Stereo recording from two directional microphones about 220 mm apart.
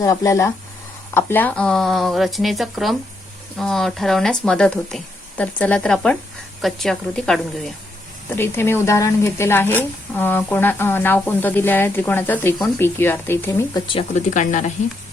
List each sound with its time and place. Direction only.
0.0 s a woman's voice: 15° left (ahead or behind)
13.8 s speech: 30° left (ahead or behind)